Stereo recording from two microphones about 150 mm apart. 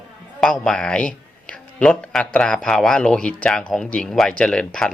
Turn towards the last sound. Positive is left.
turn(degrees=5)  # may be behind; listen again after turning